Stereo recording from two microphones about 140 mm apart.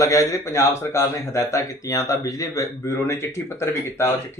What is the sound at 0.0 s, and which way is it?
Speech, 25° left (ahead or behind).